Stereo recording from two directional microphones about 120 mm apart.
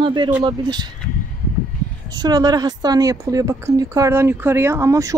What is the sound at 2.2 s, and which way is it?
Speech, 35° right (ahead or behind).